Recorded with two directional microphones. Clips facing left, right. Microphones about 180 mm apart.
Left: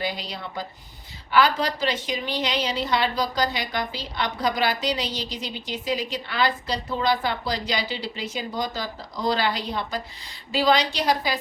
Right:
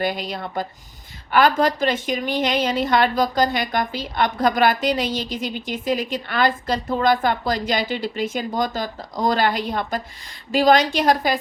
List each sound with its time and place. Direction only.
0.0 s a woman's voice: 50° right (ahead or behind)